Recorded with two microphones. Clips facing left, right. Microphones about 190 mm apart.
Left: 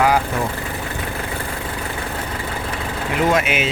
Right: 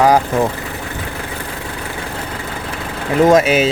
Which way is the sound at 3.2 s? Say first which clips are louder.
Right 8 dB; 40° right (ahead or behind).